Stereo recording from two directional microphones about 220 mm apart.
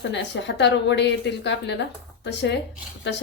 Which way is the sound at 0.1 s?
50° left (ahead or behind).